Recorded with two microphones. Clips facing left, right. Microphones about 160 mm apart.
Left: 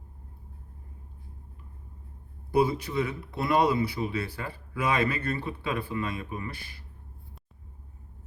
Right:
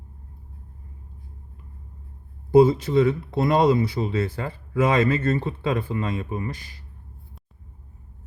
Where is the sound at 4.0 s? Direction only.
25° right (ahead or behind).